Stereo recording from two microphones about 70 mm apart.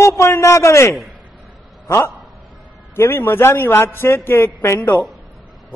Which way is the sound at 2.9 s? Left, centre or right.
Left.